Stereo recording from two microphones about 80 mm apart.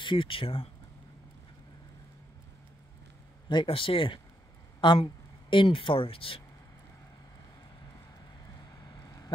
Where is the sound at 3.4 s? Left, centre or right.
Left.